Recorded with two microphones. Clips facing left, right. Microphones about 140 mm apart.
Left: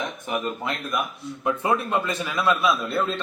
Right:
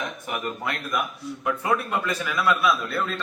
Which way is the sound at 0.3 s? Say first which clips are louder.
Left 3 dB; 20° left (ahead or behind).